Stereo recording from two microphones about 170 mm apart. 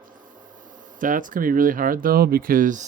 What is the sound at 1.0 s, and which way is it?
Speech, 50° right (ahead or behind).